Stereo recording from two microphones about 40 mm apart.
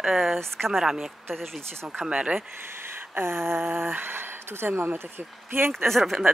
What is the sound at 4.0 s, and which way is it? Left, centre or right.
Speech, right.